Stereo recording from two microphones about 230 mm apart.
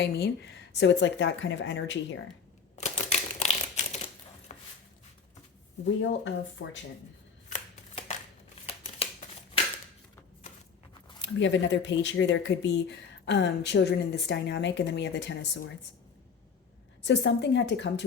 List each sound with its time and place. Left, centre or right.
0.0 s speech: left
2.7 s typewriter: left
4.5 s chopping: left
5.8 s speech: left
7.5 s shuffling cards: left
8.6 s a sound: left
11.2 s speech: left
17.0 s speech: left